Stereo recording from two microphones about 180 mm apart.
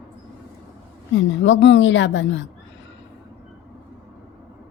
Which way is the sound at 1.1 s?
90° left.